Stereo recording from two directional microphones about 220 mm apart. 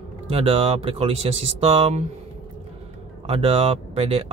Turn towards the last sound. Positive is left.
turn(degrees=-25)  # may be behind; listen again after turning